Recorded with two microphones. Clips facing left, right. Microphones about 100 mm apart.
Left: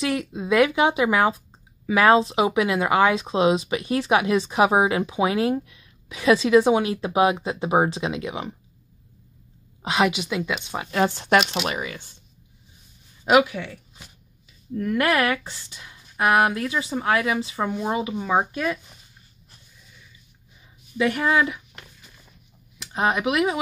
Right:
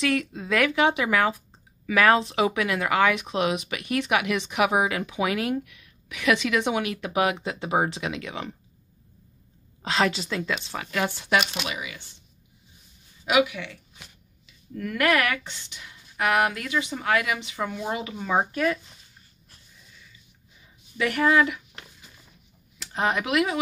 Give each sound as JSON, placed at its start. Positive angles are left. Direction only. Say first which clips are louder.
{"t": 0.0, "sound": "speech", "louder": "even", "side_deg": 20}
{"t": 9.8, "sound": "a woman's voice", "louder": "left 3 dB", "side_deg": 15}
{"t": 11.1, "sound": "speech", "louder": "left 5 dB", "side_deg": 45}
{"t": 13.2, "sound": "speech", "louder": "left 4 dB", "side_deg": 40}
{"t": 17.7, "sound": "a woman's voice", "louder": "left 5 dB", "side_deg": 20}
{"t": 21.0, "sound": "speech", "louder": "even", "side_deg": 25}
{"t": 22.9, "sound": "speech", "louder": "left 2 dB", "side_deg": 20}